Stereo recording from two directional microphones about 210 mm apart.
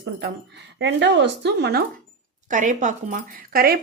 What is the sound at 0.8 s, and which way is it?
Speech, 60° right (ahead or behind).